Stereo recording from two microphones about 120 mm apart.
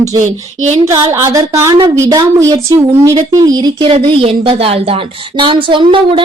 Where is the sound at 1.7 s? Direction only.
35° right (ahead or behind).